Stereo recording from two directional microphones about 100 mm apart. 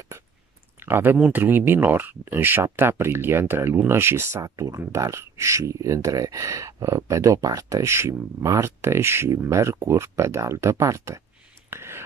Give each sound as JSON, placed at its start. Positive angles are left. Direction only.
{"t": 0.7, "sound": "a sound", "side_deg": -20}
{"t": 1.1, "sound": "speech", "side_deg": -15}
{"t": 11.7, "sound": "whispering", "side_deg": -25}